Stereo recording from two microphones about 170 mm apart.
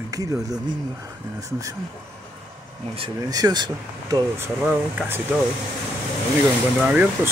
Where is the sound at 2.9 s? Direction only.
25° right (ahead or behind).